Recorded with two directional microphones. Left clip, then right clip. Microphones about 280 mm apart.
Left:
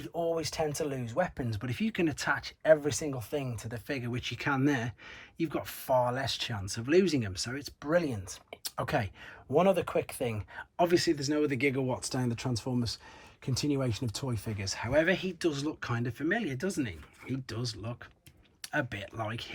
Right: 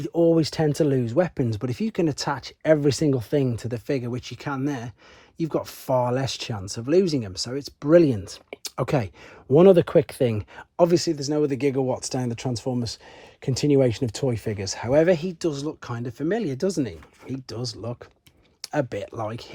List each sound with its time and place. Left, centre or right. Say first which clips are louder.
0.0 s speech: right 12 dB; right
2.8 s speech: right 12 dB; right; by 12.3 s centre
13.5 s speech: right 12 dB; right